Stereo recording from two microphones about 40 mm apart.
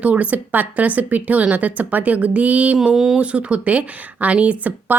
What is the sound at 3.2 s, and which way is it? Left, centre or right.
Speech, right.